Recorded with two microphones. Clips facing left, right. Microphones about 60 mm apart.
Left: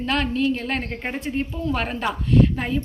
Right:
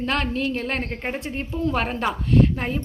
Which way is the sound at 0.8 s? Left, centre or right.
Centre.